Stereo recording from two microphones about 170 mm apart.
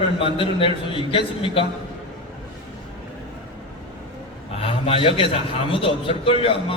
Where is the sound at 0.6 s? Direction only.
30° left (ahead or behind).